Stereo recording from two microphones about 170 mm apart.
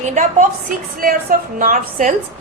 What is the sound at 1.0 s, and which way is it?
A woman's voice, 60° right (ahead or behind).